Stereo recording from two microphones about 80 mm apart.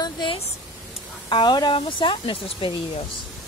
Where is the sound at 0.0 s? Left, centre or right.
Left.